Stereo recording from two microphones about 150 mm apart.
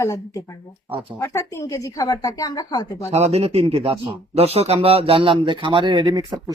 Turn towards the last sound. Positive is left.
turn(degrees=-30)  # may be behind; listen again after turning